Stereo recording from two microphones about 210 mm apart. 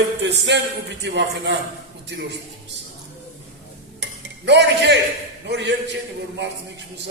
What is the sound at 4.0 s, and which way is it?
Cutlery, 55° right (ahead or behind).